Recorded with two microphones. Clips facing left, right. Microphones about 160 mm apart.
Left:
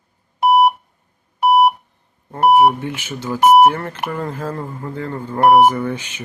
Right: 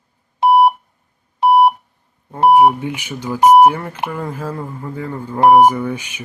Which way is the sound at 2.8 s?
15° right (ahead or behind).